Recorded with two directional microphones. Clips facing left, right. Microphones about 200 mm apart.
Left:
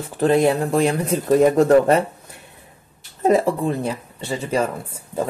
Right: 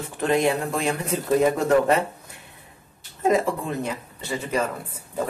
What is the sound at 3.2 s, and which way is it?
Speech, 35° left (ahead or behind).